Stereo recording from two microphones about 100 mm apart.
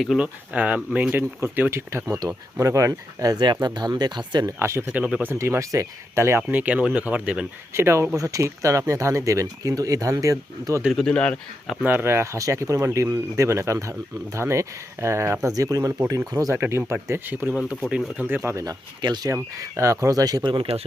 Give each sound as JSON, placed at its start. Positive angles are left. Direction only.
{"t": 0.2, "sound": "speech", "side_deg": -15}
{"t": 2.1, "sound": "speech", "side_deg": -35}
{"t": 3.3, "sound": "speech", "side_deg": -50}
{"t": 4.6, "sound": "speech", "side_deg": -25}
{"t": 5.3, "sound": "speech", "side_deg": -25}
{"t": 7.7, "sound": "speech", "side_deg": -25}
{"t": 10.9, "sound": "speech", "side_deg": 10}
{"t": 11.8, "sound": "speech", "side_deg": -20}
{"t": 17.8, "sound": "speech", "side_deg": -10}
{"t": 18.4, "sound": "speech", "side_deg": -35}
{"t": 19.3, "sound": "speech", "side_deg": -30}